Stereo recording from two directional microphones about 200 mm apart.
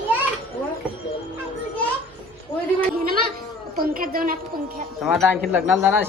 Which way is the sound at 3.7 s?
45° right (ahead or behind).